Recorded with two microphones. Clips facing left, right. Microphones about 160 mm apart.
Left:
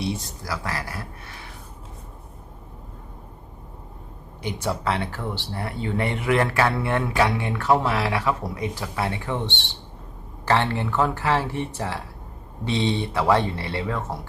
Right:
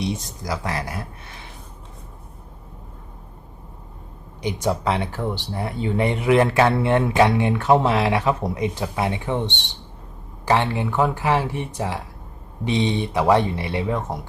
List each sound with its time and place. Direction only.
0.0 s speech: 20° right (ahead or behind)
4.4 s speech: 15° right (ahead or behind)